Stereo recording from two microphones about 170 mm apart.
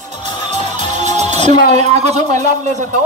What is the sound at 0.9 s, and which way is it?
Music, 40° right (ahead or behind).